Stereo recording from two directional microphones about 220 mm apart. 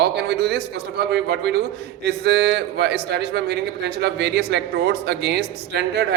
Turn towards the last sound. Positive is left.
turn(degrees=-50)  # may be behind; listen again after turning